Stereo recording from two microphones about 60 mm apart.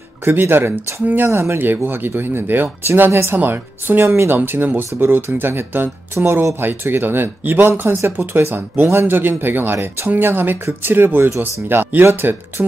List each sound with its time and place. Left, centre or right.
0.2 s speech: right
3.1 s speech: right
3.3 s speech: right
4.4 s speech: right
6.2 s speech: right